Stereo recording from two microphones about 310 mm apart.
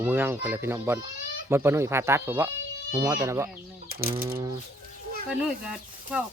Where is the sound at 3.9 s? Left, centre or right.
Right.